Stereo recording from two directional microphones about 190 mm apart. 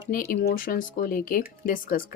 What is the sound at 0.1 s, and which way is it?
Speech, 50° left (ahead or behind).